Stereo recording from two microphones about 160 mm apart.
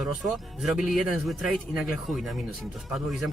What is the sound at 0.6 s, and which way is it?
Speech, centre (ahead or behind).